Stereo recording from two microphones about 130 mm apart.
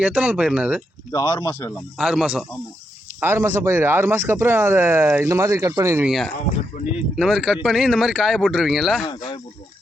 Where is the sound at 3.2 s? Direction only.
20° right (ahead or behind).